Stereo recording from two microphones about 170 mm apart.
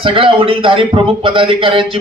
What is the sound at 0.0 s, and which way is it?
A man's voice, 30° right (ahead or behind).